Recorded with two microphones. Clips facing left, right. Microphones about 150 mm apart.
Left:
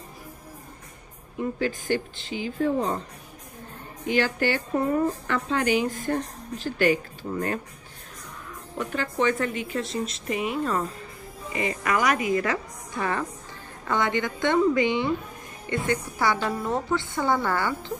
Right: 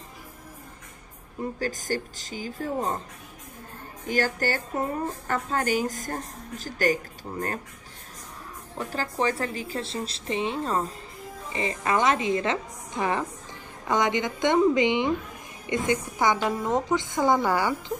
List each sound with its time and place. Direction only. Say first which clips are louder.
1.6 s a woman's voice: left 3 dB; 40° right (ahead or behind)
4.1 s a woman's voice: left 2 dB; 40° right (ahead or behind)
8.7 s a woman's voice: left 2 dB; 35° right (ahead or behind)
11.8 s a woman's voice: right 1 dB; 25° right (ahead or behind)